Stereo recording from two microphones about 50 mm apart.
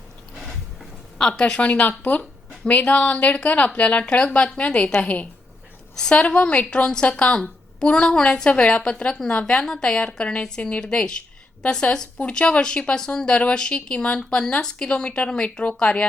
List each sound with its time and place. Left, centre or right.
0.3 s a sound: centre
1.4 s a woman's voice: centre
1.6 s a woman's voice: left